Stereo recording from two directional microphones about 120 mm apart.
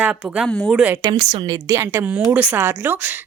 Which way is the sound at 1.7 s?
25° right (ahead or behind).